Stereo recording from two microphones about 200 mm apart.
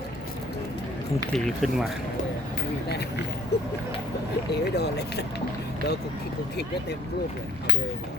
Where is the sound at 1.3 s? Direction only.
Centre (ahead or behind).